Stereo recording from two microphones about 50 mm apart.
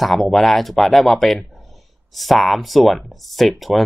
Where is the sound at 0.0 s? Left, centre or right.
Centre.